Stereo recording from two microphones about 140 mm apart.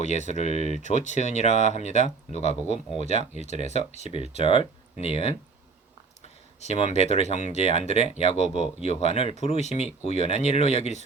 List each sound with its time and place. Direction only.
0.0 s speech: 55° left (ahead or behind)